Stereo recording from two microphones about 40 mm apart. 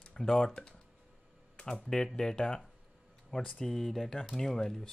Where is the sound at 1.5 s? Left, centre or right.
Left.